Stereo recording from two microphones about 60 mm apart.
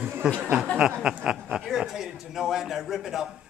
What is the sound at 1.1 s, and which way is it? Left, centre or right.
A man's voice, centre.